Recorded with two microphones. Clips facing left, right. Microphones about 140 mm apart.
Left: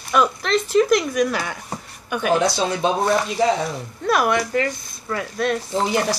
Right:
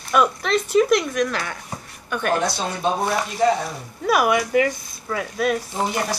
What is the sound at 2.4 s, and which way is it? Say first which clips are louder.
Speech: left 3 dB; 90° left.